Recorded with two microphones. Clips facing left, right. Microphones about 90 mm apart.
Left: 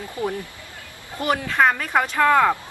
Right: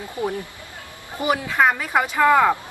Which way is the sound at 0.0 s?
20° right (ahead or behind).